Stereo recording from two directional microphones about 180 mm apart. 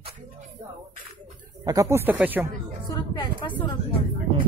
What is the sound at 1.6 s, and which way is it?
Speech, 20° right (ahead or behind).